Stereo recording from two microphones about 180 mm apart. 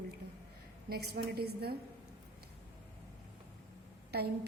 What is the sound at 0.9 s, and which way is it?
Speech, 60° right (ahead or behind).